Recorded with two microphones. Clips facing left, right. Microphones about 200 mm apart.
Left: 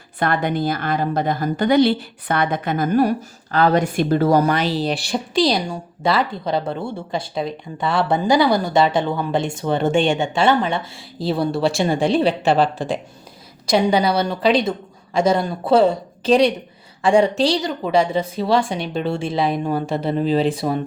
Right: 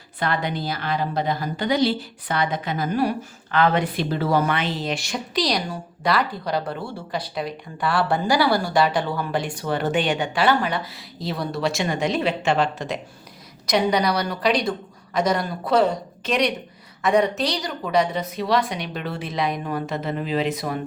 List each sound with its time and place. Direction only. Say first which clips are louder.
0.2 s a woman's voice: left 5 dB; 50° left (ahead or behind); by 20.7 s 30° left (ahead or behind)